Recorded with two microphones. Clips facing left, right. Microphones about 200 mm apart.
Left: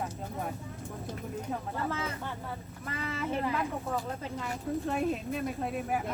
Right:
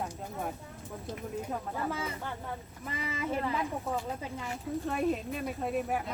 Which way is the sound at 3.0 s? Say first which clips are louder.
Left 1 dB; 15° right (ahead or behind).